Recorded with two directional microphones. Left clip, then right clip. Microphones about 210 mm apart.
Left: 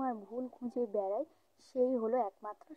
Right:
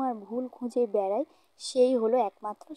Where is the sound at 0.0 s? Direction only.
30° right (ahead or behind).